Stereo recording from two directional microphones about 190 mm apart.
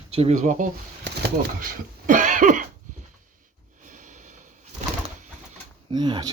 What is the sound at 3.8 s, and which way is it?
Snort, 45° right (ahead or behind).